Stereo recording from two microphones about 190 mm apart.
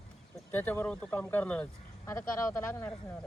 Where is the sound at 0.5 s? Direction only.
10° left (ahead or behind).